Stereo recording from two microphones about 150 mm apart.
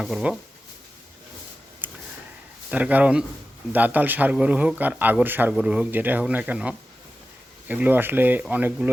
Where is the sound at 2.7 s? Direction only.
10° right (ahead or behind).